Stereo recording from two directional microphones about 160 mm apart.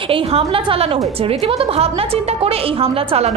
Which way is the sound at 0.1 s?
35° right (ahead or behind).